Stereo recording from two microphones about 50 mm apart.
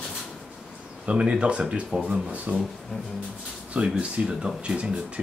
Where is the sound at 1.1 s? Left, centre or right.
Right.